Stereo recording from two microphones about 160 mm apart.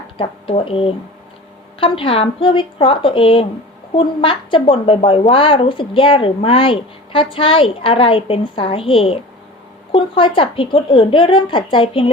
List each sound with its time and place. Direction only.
0.2 s a woman's voice: 35° left (ahead or behind)